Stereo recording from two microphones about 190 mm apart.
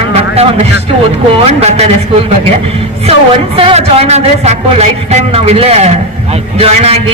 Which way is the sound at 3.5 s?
30° right (ahead or behind).